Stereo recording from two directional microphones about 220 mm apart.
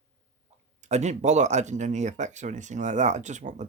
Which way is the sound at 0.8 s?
30° right (ahead or behind).